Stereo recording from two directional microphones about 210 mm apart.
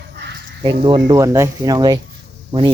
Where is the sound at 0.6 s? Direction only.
20° right (ahead or behind).